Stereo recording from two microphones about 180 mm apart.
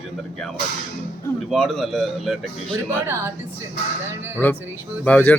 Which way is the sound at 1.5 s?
Centre (ahead or behind).